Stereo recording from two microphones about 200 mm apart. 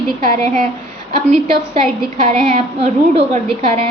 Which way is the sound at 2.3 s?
30° right (ahead or behind).